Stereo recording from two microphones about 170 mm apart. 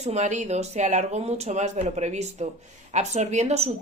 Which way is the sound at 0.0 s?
40° right (ahead or behind).